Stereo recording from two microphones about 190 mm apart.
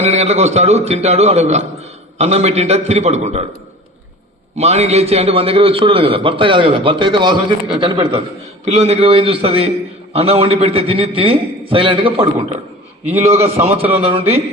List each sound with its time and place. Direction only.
0.0 s a man's voice: 35° right (ahead or behind)
4.5 s a man's voice: 35° right (ahead or behind)
13.5 s a man's voice: 35° right (ahead or behind)